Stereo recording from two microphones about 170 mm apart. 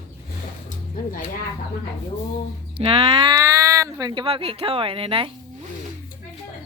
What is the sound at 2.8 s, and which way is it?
Speech, 35° right (ahead or behind).